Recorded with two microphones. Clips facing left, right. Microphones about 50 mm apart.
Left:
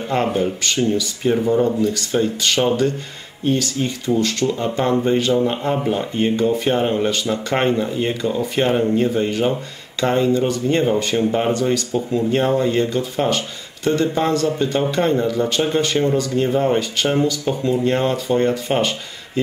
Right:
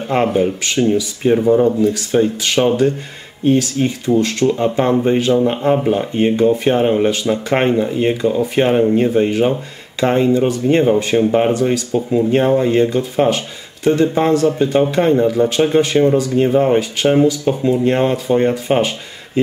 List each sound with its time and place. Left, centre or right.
0.1 s speech: centre